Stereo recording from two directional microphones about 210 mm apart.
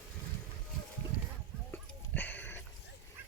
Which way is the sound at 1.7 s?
10° left (ahead or behind).